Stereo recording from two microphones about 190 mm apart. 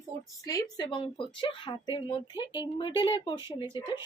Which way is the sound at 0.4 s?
20° left (ahead or behind).